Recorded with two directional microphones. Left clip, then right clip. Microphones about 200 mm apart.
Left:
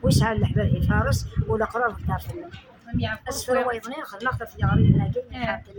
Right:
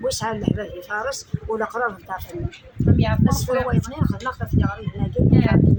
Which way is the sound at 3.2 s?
5° left (ahead or behind).